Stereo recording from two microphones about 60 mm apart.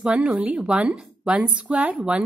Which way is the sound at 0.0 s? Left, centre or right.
Centre.